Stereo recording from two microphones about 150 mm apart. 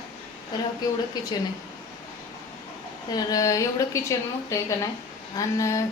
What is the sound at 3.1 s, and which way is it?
A woman's voice, 25° left (ahead or behind).